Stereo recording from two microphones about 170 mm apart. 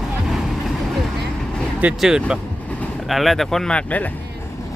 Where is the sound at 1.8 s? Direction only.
5° right (ahead or behind).